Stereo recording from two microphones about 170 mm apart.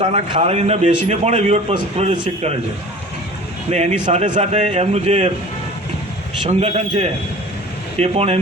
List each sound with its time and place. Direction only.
0.0 s a man's voice: 35° right (ahead or behind)
3.7 s a man's voice: 40° right (ahead or behind)
6.5 s a man's voice: 40° right (ahead or behind)